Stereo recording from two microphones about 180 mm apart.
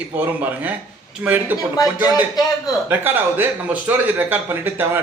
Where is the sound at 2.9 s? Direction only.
10° right (ahead or behind).